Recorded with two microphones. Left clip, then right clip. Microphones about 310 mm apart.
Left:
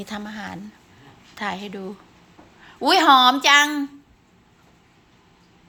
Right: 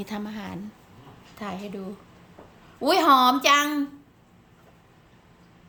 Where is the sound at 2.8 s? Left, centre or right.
Centre.